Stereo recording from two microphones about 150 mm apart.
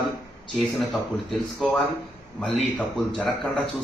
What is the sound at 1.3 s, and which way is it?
Speech, 5° left (ahead or behind).